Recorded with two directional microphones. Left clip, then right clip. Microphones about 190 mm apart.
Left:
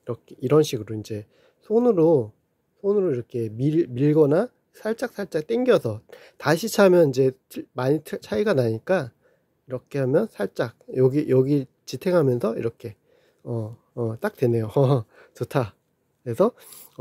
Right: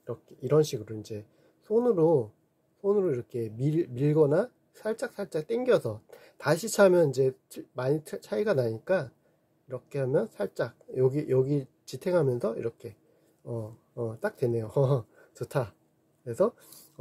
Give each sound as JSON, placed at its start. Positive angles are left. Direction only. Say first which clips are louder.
{"t": 0.0, "sound": "a man's voice", "louder": "left 7 dB", "side_deg": 40}